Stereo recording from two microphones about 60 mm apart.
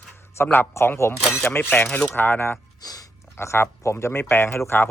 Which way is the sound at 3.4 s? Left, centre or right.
Left.